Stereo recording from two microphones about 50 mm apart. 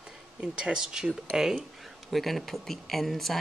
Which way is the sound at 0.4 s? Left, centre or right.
Centre.